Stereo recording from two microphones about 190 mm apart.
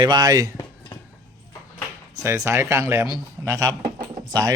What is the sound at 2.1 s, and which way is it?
Speech, 15° right (ahead or behind).